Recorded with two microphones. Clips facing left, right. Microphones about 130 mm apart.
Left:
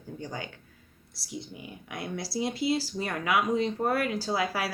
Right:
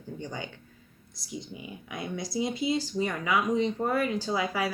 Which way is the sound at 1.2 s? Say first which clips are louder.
Right 1 dB; 5° left (ahead or behind).